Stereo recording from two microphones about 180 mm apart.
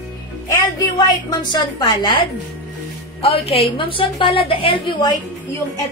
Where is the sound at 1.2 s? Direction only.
25° left (ahead or behind).